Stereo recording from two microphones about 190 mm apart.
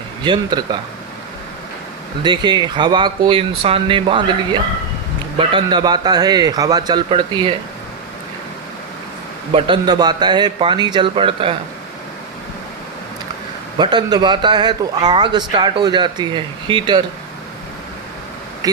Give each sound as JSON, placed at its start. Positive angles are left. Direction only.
{"t": 0.2, "sound": "a man's voice", "side_deg": -25}
{"t": 2.2, "sound": "a man's voice", "side_deg": -25}
{"t": 9.5, "sound": "a man's voice", "side_deg": -25}
{"t": 13.7, "sound": "a man's voice", "side_deg": -25}
{"t": 18.6, "sound": "speech", "side_deg": -20}